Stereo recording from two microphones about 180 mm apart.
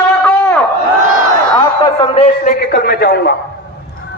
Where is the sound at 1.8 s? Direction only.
30° left (ahead or behind).